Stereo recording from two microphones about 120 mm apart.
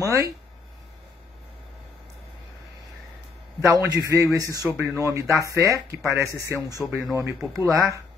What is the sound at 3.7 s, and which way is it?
A man's voice, 30° right (ahead or behind).